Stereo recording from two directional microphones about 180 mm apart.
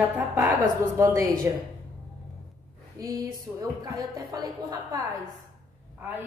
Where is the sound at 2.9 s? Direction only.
20° right (ahead or behind).